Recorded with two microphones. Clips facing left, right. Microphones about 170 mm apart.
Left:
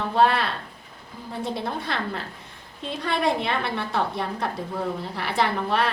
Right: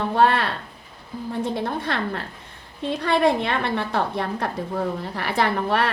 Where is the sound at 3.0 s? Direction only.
55° right (ahead or behind).